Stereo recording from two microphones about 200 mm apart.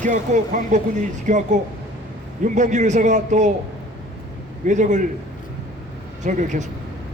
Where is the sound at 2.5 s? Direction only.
35° right (ahead or behind).